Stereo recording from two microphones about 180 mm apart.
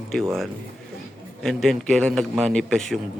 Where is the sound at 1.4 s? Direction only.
Centre (ahead or behind).